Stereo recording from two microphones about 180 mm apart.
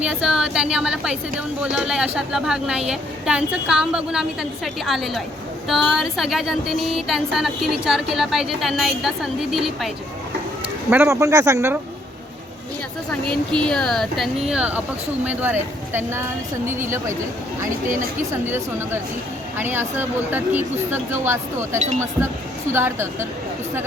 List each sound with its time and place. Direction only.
0.0 s a sound: 5° right (ahead or behind)
10.8 s speech: 15° right (ahead or behind)
13.2 s a sound: 5° left (ahead or behind)
15.2 s speech: 10° right (ahead or behind)
18.3 s speech: 15° right (ahead or behind)
21.8 s speech: 40° right (ahead or behind)
22.7 s speech: 15° right (ahead or behind)